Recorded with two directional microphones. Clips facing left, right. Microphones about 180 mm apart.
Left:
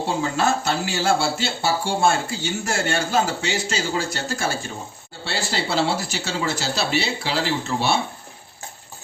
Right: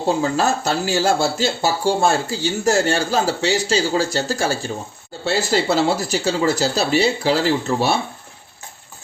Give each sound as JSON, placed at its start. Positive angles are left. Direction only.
{"t": 0.2, "sound": "speech", "side_deg": -40}